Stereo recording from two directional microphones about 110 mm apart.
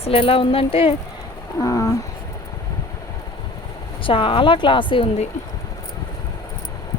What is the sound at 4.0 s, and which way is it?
Speech, 50° left (ahead or behind).